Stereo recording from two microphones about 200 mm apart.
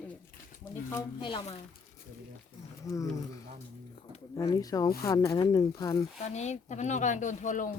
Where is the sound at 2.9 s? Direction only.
15° left (ahead or behind).